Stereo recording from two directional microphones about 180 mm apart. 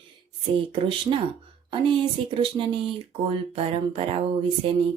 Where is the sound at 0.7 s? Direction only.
30° right (ahead or behind).